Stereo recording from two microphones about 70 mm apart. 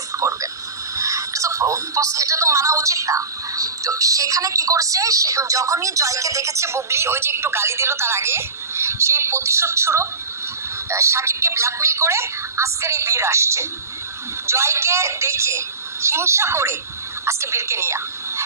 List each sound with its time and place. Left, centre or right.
0.9 s a woman's voice: right